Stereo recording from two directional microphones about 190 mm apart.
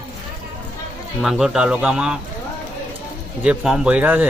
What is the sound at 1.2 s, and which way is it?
Speech, centre (ahead or behind).